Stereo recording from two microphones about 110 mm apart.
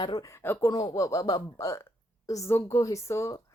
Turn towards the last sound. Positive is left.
turn(degrees=25)  # may be behind; listen again after turning